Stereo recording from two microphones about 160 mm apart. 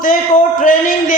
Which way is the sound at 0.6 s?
55° left (ahead or behind).